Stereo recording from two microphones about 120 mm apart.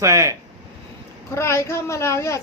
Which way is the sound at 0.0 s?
25° right (ahead or behind).